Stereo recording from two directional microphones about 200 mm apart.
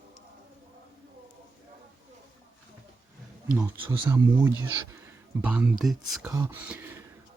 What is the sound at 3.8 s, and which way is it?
Speech, 25° right (ahead or behind).